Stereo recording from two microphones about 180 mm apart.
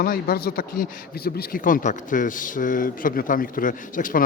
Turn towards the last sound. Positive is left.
turn(degrees=50)  # may be behind; listen again after turning